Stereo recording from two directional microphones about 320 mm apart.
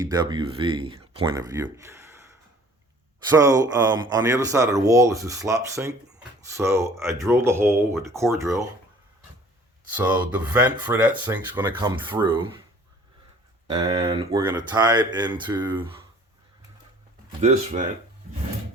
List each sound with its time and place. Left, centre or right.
0.0 s speech: centre
9.9 s speech: centre
13.7 s speech: centre
17.4 s speech: right